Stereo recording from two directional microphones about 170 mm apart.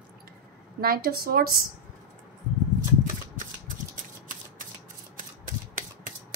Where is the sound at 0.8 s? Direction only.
65° right (ahead or behind).